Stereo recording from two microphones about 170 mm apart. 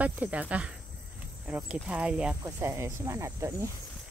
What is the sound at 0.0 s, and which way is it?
Speech, 10° right (ahead or behind).